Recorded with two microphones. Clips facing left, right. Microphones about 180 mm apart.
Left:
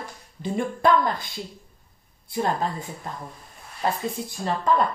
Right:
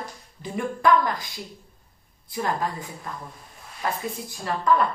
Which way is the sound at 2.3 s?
30° left (ahead or behind).